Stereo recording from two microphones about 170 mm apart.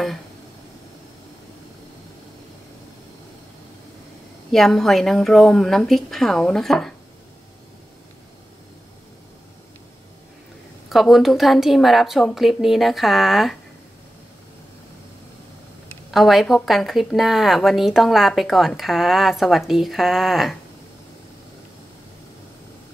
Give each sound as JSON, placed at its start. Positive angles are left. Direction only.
{"t": 4.5, "sound": "a woman's voice", "side_deg": 0}
{"t": 10.9, "sound": "a woman's voice", "side_deg": 0}
{"t": 16.1, "sound": "a woman's voice", "side_deg": 0}